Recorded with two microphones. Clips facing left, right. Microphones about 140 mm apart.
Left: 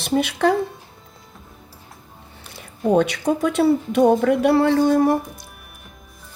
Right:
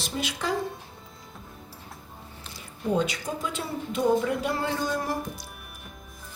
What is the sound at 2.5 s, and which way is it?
Speech, 65° left (ahead or behind).